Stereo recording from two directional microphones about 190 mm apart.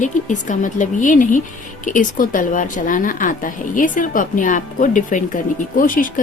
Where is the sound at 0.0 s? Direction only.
40° left (ahead or behind).